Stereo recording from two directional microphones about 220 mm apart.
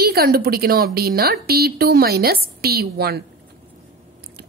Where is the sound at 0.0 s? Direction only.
45° right (ahead or behind).